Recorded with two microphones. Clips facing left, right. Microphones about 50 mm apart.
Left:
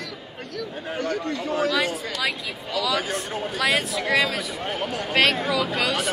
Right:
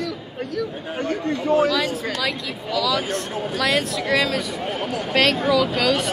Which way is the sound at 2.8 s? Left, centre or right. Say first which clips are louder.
Right 2 dB; centre.